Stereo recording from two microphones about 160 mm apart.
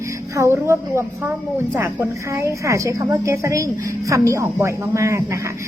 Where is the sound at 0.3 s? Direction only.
15° right (ahead or behind).